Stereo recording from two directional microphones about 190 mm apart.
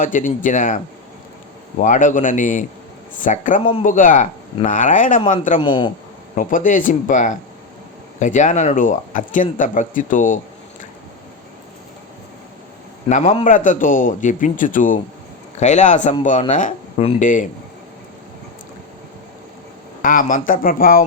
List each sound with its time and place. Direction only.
0.0 s speech: 45° left (ahead or behind)
1.8 s speech: 45° left (ahead or behind)
5.5 s speech: 25° left (ahead or behind)
6.3 s speech: 45° left (ahead or behind)
13.1 s speech: 40° left (ahead or behind)
20.0 s speech: 45° left (ahead or behind)